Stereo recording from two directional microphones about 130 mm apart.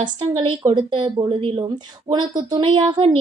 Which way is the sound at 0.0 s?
35° right (ahead or behind).